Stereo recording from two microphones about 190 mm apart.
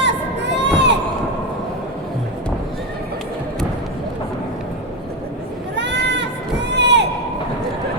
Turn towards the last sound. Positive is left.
turn(degrees=-65)  # may be behind; listen again after turning